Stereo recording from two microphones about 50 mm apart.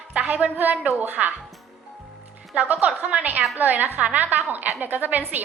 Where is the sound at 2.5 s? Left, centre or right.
Right.